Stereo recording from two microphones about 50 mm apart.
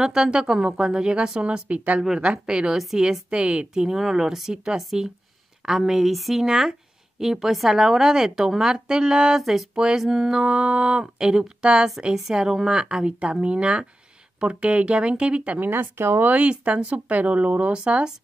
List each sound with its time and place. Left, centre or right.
0.0 s speech: centre
9.4 s a sound: centre
9.8 s speech: centre
15.6 s speech: right
16.3 s speech: right